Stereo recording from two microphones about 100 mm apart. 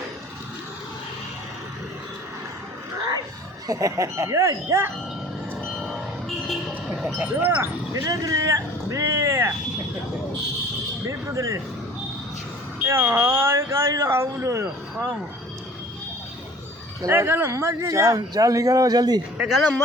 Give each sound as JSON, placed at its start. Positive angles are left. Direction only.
{"t": 3.7, "sound": "speech", "side_deg": -35}
{"t": 5.6, "sound": "vehicle", "side_deg": 5}
{"t": 7.4, "sound": "speech", "side_deg": -25}
{"t": 8.0, "sound": "speech", "side_deg": -35}
{"t": 11.0, "sound": "speech", "side_deg": -30}
{"t": 12.8, "sound": "speech", "side_deg": -25}
{"t": 17.1, "sound": "speech", "side_deg": -25}
{"t": 19.4, "sound": "speech", "side_deg": -5}